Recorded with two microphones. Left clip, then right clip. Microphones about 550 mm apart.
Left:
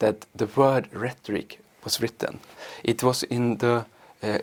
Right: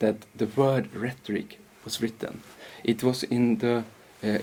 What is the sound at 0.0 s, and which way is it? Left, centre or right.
Speech, left.